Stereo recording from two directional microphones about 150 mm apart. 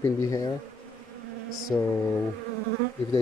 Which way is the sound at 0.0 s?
20° left (ahead or behind).